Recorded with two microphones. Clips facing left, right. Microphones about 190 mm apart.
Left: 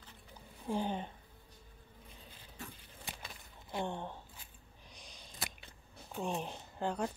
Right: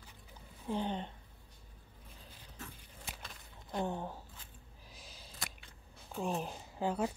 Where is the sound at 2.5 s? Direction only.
Centre (ahead or behind).